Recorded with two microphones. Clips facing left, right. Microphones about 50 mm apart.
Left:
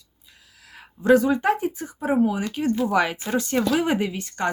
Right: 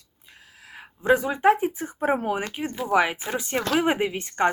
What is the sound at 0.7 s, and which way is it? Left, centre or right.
Speech, right.